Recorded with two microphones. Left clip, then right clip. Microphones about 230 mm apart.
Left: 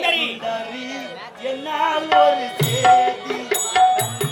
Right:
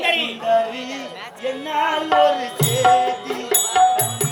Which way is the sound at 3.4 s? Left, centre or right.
Centre.